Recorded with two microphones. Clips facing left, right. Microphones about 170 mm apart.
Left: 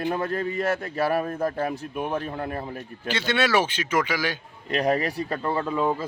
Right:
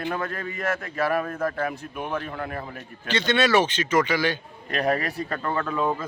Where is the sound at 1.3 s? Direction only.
20° left (ahead or behind).